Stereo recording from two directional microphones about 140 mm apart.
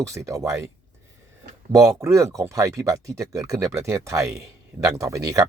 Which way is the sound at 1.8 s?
20° right (ahead or behind).